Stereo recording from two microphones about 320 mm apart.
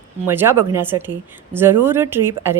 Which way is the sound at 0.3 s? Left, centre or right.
Centre.